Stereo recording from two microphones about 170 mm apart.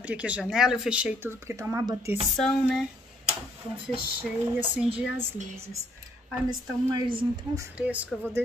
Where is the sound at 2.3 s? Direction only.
5° left (ahead or behind).